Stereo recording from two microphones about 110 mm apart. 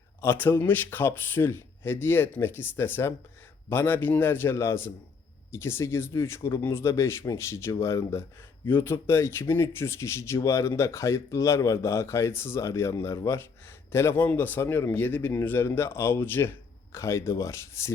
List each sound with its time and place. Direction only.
0.2 s speech: 20° left (ahead or behind)